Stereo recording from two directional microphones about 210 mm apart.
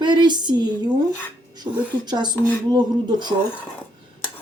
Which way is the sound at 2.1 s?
20° right (ahead or behind).